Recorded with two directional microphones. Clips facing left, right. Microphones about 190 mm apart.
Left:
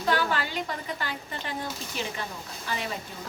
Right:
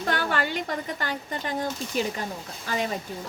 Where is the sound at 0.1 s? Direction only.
50° right (ahead or behind).